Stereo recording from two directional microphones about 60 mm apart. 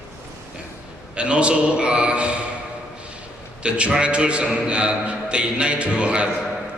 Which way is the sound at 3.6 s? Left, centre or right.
Centre.